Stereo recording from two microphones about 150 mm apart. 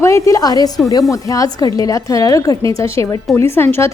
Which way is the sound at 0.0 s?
20° left (ahead or behind).